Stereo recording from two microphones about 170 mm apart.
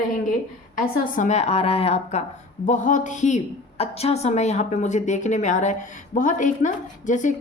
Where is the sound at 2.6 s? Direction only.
45° left (ahead or behind).